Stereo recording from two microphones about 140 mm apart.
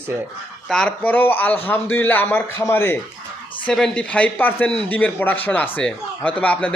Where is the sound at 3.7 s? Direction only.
5° left (ahead or behind).